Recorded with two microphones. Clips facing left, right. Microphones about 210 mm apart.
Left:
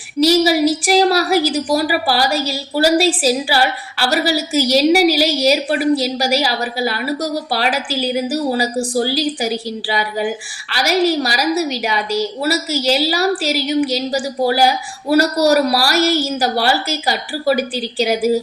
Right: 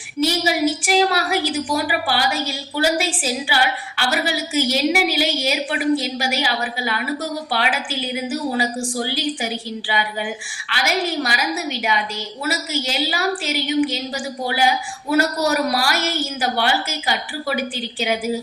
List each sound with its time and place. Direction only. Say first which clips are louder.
0.2 s a woman's voice: left 6 dB; 40° left (ahead or behind)